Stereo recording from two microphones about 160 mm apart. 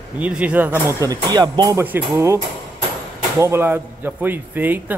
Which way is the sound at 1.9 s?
15° right (ahead or behind).